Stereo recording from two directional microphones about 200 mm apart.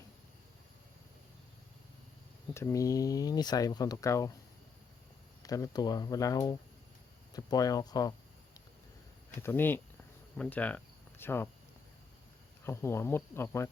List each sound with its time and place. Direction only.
2.5 s speech: 15° left (ahead or behind)
5.4 s speech: 15° left (ahead or behind)
9.4 s speech: 10° left (ahead or behind)
12.6 s speech: 10° left (ahead or behind)